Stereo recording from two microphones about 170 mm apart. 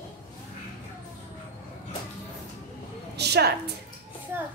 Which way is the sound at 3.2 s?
75° right (ahead or behind).